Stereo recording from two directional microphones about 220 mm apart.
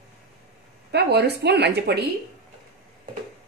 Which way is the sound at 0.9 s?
50° right (ahead or behind).